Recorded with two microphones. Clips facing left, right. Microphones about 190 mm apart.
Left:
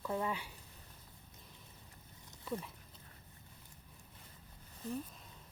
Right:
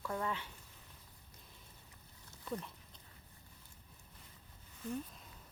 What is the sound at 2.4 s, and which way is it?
Speech, 5° left (ahead or behind).